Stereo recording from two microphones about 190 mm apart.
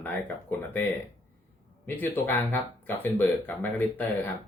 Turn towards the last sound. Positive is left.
turn(degrees=10)  # may be behind; listen again after turning